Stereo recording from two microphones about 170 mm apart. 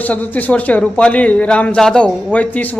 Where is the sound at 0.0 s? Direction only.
10° left (ahead or behind).